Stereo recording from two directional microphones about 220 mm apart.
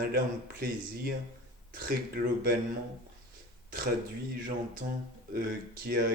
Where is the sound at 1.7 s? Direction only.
45° right (ahead or behind).